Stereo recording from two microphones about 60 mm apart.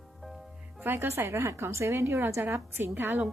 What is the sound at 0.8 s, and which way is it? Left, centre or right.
Speech, right.